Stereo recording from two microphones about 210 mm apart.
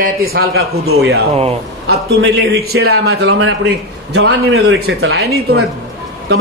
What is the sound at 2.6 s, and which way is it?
Speech, 90° right.